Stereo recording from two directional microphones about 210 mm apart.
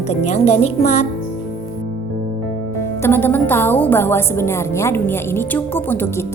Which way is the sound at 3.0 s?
10° left (ahead or behind).